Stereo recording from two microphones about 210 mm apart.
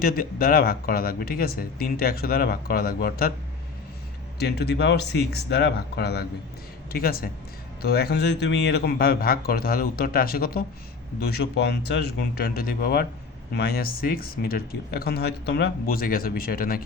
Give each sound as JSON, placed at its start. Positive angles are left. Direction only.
{"t": 0.0, "sound": "speech", "side_deg": 45}
{"t": 4.4, "sound": "speech", "side_deg": 50}